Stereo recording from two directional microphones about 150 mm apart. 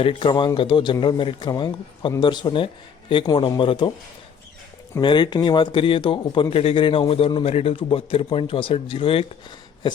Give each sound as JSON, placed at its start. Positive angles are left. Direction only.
{"t": 0.0, "sound": "speech", "side_deg": 35}
{"t": 4.9, "sound": "speech", "side_deg": 30}